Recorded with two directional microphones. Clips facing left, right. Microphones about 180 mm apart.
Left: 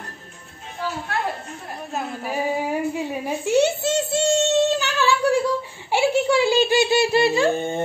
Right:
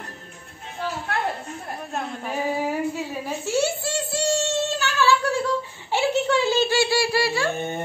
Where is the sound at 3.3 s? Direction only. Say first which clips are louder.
Left 5 dB; 20° left (ahead or behind).